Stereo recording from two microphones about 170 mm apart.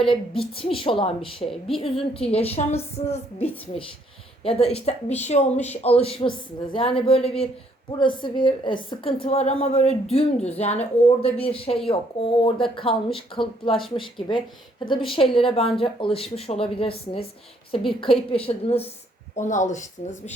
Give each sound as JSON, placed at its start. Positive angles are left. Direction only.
{"t": 0.1, "sound": "speech", "side_deg": 30}
{"t": 1.5, "sound": "speech", "side_deg": 0}
{"t": 2.1, "sound": "a woman's voice", "side_deg": 35}
{"t": 19.4, "sound": "speech", "side_deg": 45}